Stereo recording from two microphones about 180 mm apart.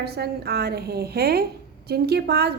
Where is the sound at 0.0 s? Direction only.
60° right (ahead or behind).